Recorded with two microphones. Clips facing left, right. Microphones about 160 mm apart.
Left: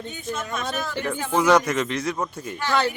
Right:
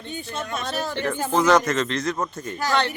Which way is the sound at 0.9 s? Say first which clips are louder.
Right 1 dB; 10° left (ahead or behind).